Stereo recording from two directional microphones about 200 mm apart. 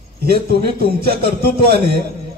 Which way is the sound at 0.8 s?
50° right (ahead or behind).